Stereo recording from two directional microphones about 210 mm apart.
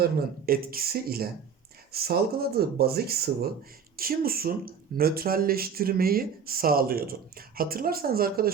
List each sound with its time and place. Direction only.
0.0 s speech: 45° right (ahead or behind)